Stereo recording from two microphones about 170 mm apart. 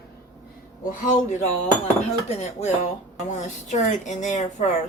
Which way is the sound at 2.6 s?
40° left (ahead or behind).